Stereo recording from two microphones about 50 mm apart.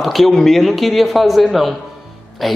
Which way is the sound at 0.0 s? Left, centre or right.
Centre.